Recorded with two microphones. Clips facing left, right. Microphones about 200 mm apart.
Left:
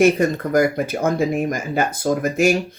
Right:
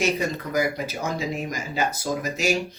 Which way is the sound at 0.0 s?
50° left (ahead or behind).